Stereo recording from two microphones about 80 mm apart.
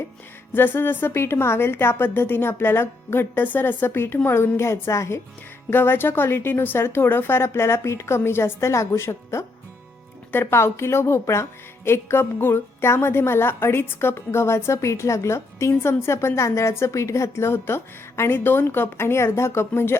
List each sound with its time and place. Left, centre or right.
0.5 s a woman's voice: left